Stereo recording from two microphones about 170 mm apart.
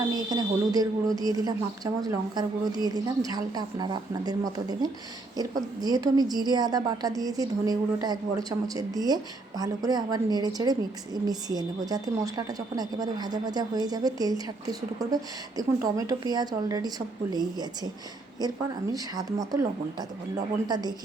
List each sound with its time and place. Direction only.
0.1 s a woman's voice: 25° right (ahead or behind)
18.3 s a woman's voice: 25° right (ahead or behind)